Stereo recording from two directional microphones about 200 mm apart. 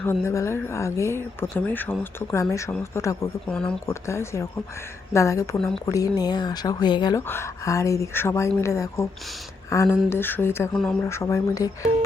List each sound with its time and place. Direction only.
0.0 s speech: 10° left (ahead or behind)
3.4 s speech: 5° left (ahead or behind)
5.5 s speech: 5° left (ahead or behind)
5.8 s speech: 15° left (ahead or behind)